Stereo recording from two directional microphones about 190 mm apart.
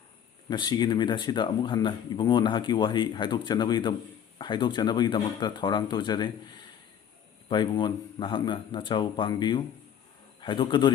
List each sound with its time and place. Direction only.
0.5 s speech: 25° left (ahead or behind)
7.4 s speech: 25° left (ahead or behind)